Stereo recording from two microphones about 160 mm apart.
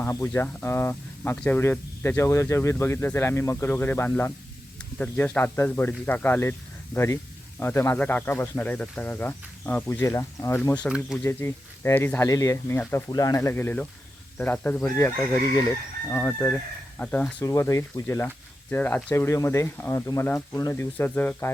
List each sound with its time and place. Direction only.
0.0 s speech: 15° left (ahead or behind)
10.8 s speech: 5° right (ahead or behind)
11.2 s speech: 15° left (ahead or behind)